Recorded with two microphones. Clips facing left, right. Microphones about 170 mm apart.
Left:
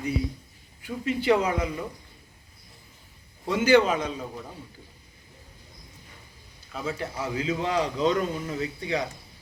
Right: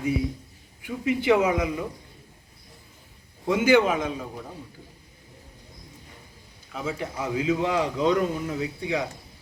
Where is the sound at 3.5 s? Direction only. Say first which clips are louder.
Right 1 dB; 10° right (ahead or behind).